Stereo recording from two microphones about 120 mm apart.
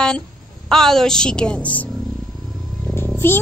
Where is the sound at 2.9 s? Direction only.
20° left (ahead or behind).